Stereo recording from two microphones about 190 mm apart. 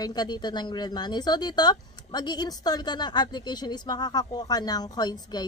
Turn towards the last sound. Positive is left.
turn(degrees=20)  # may be behind; listen again after turning